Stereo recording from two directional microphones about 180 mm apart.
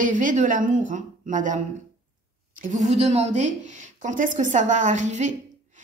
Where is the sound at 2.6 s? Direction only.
40° right (ahead or behind).